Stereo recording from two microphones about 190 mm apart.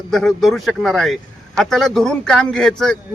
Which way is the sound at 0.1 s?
Centre (ahead or behind).